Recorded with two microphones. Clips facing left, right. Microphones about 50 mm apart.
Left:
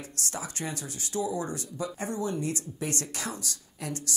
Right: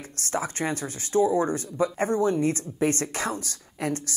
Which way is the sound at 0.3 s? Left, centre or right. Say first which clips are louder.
Right 9 dB; right.